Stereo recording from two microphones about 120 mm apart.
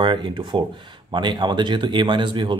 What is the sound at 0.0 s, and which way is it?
Speech, 45° right (ahead or behind).